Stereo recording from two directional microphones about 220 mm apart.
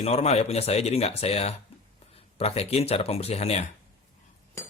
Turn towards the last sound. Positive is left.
turn(degrees=30)  # may be behind; listen again after turning